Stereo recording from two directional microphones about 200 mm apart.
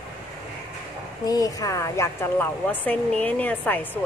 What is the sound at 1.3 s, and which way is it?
A woman's voice, 20° left (ahead or behind).